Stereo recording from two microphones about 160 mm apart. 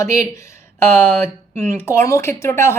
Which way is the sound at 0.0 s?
20° left (ahead or behind).